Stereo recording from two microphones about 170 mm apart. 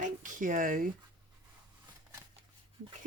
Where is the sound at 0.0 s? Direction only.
50° right (ahead or behind).